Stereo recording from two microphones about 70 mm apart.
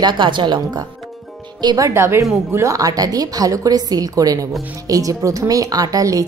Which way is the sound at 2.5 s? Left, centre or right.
Right.